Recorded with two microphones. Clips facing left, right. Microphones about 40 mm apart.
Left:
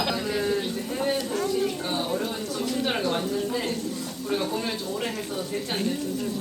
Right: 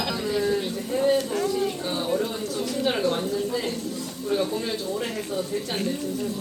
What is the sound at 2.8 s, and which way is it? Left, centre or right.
Bird, left.